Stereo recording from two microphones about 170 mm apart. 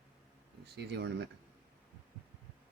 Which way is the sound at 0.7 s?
75° right (ahead or behind).